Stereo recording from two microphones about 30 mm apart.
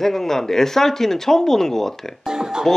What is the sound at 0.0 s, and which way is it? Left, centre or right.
Speech, centre.